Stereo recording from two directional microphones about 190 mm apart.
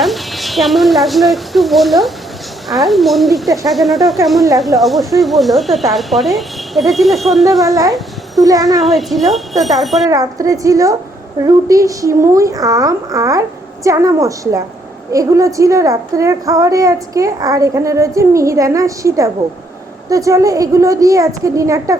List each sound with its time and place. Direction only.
0.0 s speech: centre (ahead or behind)
8.4 s a child's voice: 20° right (ahead or behind)
9.0 s speech: centre (ahead or behind)
10.1 s a child's voice: 20° right (ahead or behind)